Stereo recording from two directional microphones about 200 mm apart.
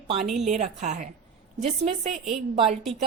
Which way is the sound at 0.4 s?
35° right (ahead or behind).